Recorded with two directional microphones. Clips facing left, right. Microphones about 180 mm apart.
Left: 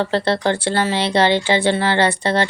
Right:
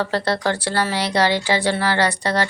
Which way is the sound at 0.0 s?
25° left (ahead or behind).